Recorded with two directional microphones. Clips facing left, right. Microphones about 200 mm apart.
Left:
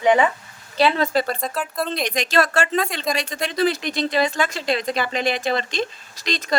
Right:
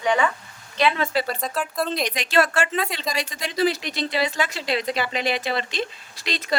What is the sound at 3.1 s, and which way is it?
Speech, 55° left (ahead or behind).